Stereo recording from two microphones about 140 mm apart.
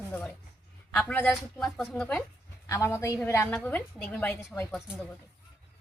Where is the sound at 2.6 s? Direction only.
20° left (ahead or behind).